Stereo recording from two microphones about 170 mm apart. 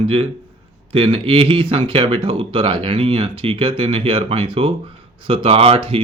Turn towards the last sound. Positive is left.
turn(degrees=-30)  # may be behind; listen again after turning